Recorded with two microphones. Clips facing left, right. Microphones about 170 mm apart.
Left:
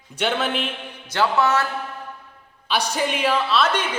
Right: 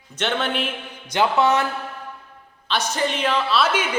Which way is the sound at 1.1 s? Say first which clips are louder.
Right 1 dB; 20° right (ahead or behind).